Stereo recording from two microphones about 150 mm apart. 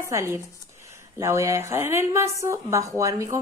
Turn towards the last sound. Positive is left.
turn(degrees=-20)  # may be behind; listen again after turning